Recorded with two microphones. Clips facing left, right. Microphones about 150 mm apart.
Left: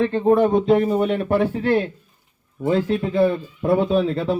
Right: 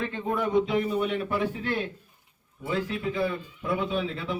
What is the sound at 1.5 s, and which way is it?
A man's voice, 40° left (ahead or behind).